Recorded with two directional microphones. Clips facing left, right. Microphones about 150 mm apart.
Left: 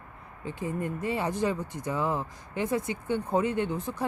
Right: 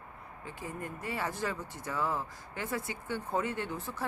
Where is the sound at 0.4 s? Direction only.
20° left (ahead or behind).